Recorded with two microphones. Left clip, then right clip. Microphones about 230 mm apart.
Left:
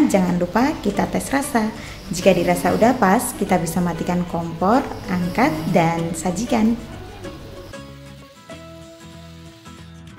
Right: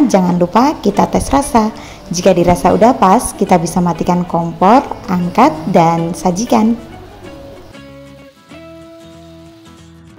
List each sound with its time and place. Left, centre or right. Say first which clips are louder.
0.1 s a woman's voice: right 8 dB; centre